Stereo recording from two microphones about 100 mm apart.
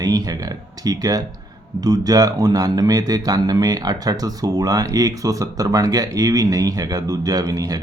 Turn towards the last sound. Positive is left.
turn(degrees=-40)  # may be behind; listen again after turning